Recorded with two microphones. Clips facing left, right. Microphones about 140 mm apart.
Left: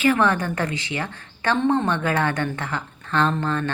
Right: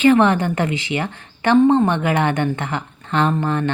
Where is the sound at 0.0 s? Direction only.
20° right (ahead or behind).